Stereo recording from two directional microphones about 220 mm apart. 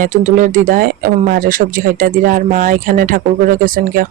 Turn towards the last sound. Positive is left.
turn(degrees=-40)  # may be behind; listen again after turning